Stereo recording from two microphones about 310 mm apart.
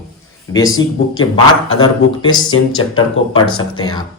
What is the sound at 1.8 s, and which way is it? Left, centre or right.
Speech, centre.